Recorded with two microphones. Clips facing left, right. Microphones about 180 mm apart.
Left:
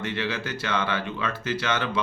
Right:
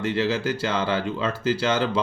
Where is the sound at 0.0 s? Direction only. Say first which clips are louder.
Right 6 dB; 30° right (ahead or behind).